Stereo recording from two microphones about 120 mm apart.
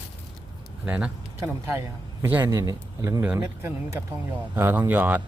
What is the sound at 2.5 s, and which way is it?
Speech, 30° right (ahead or behind).